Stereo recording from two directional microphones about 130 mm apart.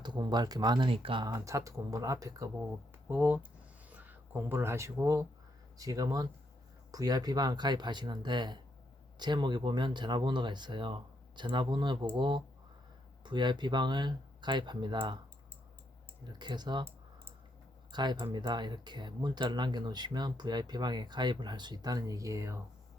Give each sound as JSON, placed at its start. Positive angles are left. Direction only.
{"t": 0.0, "sound": "speech", "side_deg": -35}
{"t": 3.1, "sound": "speech", "side_deg": -10}
{"t": 16.2, "sound": "speech", "side_deg": -35}
{"t": 17.9, "sound": "speech", "side_deg": -35}